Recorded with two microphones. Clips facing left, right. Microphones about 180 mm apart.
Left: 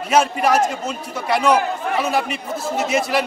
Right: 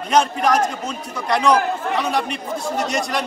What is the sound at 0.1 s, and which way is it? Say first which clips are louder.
A man's voice: left 1 dB; 5° left (ahead or behind).